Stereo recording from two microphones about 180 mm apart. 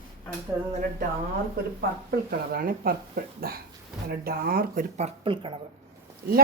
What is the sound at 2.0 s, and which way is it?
Speech, 55° right (ahead or behind).